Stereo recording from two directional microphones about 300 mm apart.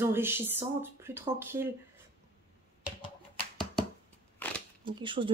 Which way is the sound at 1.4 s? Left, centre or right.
Centre.